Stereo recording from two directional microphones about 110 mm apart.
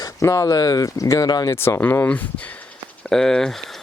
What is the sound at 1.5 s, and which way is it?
Speech, 20° left (ahead or behind).